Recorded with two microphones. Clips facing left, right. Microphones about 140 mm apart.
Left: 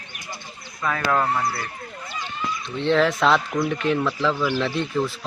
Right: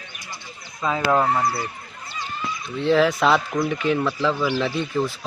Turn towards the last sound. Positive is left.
turn(degrees=0)  # may be behind; listen again after turning